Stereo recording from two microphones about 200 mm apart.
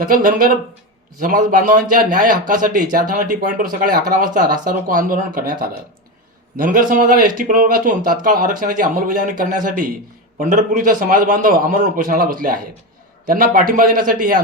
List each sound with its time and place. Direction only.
0.0 s a man's voice: 45° right (ahead or behind)